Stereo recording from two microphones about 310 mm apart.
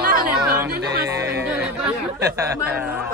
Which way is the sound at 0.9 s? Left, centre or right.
Right.